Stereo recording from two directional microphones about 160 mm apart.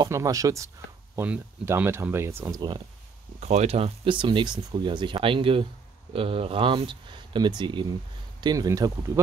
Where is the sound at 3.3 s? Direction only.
45° right (ahead or behind).